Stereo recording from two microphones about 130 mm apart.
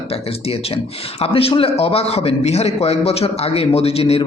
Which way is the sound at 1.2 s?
45° left (ahead or behind).